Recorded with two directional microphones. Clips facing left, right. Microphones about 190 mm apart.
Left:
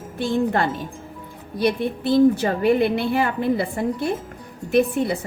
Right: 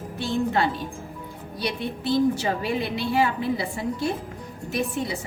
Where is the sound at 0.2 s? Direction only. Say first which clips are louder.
Left 3 dB; 50° left (ahead or behind).